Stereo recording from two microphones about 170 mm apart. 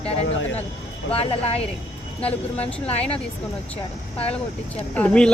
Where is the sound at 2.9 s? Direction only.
35° left (ahead or behind).